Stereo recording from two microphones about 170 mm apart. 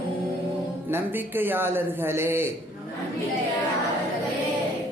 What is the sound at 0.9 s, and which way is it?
Mantra, 10° right (ahead or behind).